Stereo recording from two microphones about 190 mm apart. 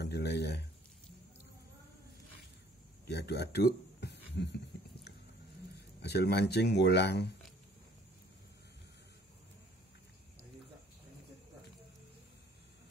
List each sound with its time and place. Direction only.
0.0 s a sound: 60° left (ahead or behind)
3.1 s speech: 60° left (ahead or behind)
5.8 s speech: 60° left (ahead or behind)